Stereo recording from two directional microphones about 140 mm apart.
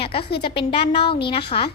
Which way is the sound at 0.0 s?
40° left (ahead or behind).